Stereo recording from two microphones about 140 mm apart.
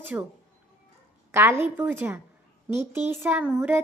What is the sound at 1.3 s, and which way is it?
Speech, 15° right (ahead or behind).